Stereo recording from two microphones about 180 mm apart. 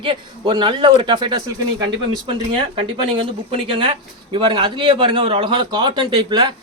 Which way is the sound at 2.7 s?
30° right (ahead or behind).